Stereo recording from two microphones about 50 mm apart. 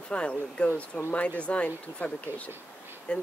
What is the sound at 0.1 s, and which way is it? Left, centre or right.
Speech, left.